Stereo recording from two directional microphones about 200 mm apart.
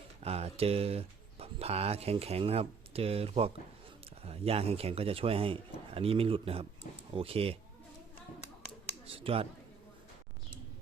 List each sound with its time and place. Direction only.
0.2 s speech: 30° right (ahead or behind)
9.0 s speech: 30° right (ahead or behind)